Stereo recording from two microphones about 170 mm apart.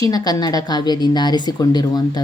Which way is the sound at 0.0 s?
20° left (ahead or behind).